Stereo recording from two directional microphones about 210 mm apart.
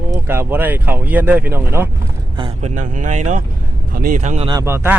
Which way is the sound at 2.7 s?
40° right (ahead or behind).